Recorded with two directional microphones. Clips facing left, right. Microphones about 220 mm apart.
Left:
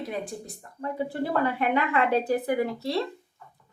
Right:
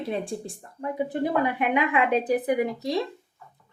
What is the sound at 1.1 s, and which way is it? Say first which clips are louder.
A woman's voice: right 2 dB; 15° right (ahead or behind).